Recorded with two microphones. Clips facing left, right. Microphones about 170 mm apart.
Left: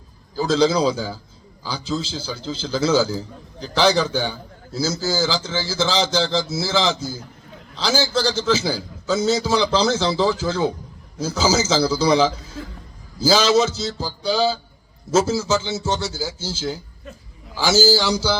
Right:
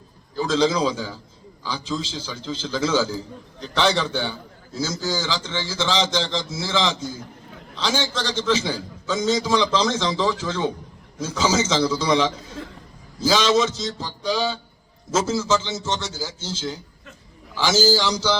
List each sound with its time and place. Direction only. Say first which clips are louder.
0.4 s a man's voice: left 3 dB; 35° left (ahead or behind)
15.2 s a man's voice: right 1 dB; 5° left (ahead or behind)
17.7 s a man's voice: left 2 dB; 5° left (ahead or behind)
18.0 s a man's voice: left 3 dB; 30° left (ahead or behind)